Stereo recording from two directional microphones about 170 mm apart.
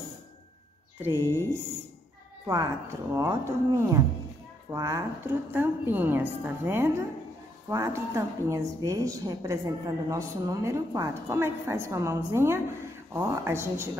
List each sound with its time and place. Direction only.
1.1 s a woman's voice: 15° left (ahead or behind)
2.4 s a woman's voice: 20° right (ahead or behind)